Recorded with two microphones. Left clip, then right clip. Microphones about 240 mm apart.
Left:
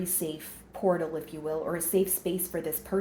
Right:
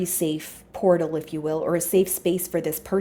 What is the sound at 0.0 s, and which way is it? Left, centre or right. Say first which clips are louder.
A woman's voice: right 9 dB; right.